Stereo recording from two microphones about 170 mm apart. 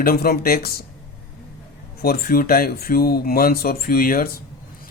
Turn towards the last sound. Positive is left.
turn(degrees=60)  # may be behind; listen again after turning